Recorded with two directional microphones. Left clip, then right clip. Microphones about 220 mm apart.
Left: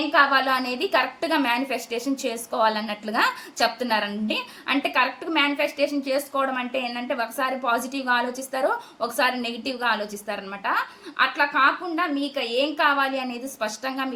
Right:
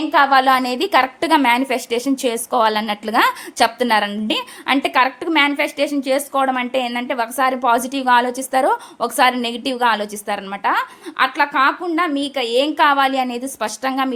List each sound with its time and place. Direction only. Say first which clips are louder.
0.1 s a woman's voice: right 7 dB; 45° right (ahead or behind)